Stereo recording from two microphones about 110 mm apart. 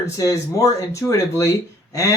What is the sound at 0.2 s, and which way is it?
Speech, 30° left (ahead or behind).